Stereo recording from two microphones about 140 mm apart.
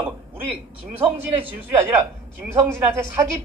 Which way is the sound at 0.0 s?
10° right (ahead or behind).